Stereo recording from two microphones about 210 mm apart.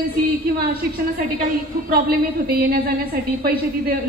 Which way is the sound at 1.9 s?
45° right (ahead or behind).